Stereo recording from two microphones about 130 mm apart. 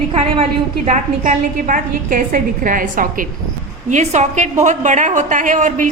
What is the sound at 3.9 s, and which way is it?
A woman's voice, 60° right (ahead or behind).